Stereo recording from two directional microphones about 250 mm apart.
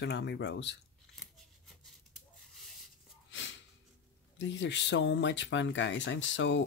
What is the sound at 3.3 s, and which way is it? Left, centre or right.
Snort, left.